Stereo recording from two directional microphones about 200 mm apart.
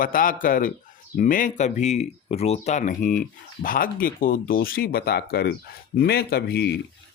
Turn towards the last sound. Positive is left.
turn(degrees=55)  # may be behind; listen again after turning